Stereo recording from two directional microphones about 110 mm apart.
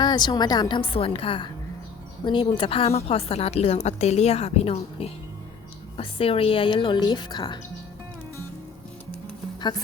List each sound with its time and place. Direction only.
0.0 s a woman's voice: 40° left (ahead or behind)
0.8 s a woman's voice: 60° left (ahead or behind); by 7.6 s 40° left (ahead or behind)